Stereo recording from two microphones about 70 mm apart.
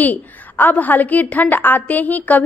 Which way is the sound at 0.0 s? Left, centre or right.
Left.